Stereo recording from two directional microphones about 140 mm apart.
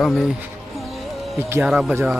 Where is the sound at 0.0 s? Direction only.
Centre (ahead or behind).